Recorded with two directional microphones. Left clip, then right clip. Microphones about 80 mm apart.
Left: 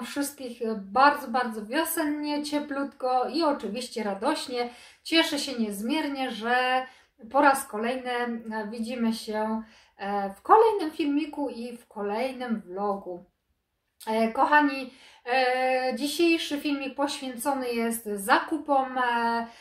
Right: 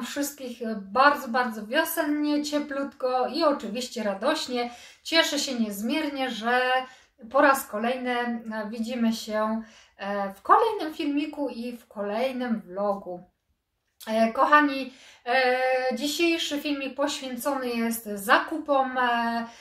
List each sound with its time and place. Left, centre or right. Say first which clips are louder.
0.0 s a woman's voice: right 1 dB; centre
14.0 s a woman's voice: right 2 dB; centre